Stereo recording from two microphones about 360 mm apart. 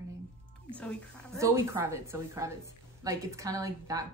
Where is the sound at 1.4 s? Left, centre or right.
Centre.